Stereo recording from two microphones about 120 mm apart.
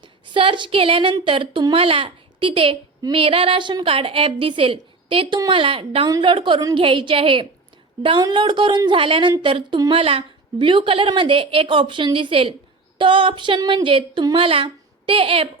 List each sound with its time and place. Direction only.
0.0 s a woman's voice: 45° right (ahead or behind)
10.0 s a woman's voice: 50° right (ahead or behind)